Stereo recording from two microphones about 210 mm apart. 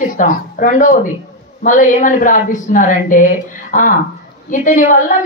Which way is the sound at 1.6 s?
35° left (ahead or behind).